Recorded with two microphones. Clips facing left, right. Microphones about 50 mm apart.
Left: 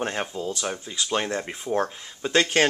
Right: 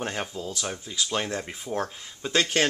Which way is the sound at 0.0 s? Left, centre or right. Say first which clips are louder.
Left 3 dB; centre.